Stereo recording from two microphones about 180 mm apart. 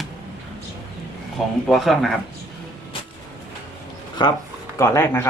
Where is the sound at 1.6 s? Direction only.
Centre (ahead or behind).